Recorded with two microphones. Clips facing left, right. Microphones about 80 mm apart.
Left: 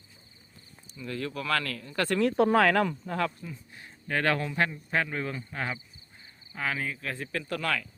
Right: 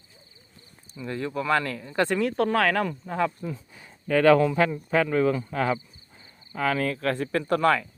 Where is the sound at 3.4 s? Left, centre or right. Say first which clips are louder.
Right 8 dB; right.